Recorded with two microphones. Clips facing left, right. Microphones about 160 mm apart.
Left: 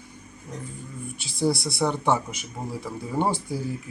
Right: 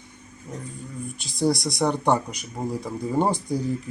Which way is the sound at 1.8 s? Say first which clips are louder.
Right 2 dB; 15° right (ahead or behind).